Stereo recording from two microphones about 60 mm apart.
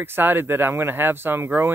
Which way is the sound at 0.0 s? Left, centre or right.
Right.